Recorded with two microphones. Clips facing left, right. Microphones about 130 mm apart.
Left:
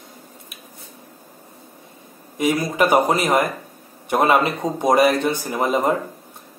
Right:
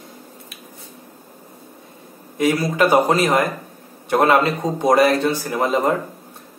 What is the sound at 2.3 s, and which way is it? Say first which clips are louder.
Speech: right 2 dB; 15° left (ahead or behind).